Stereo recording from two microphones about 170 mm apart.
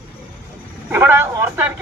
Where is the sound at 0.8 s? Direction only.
15° right (ahead or behind).